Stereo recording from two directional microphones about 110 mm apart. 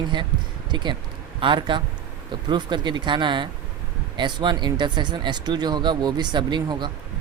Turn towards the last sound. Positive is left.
turn(degrees=-45)  # may be behind; listen again after turning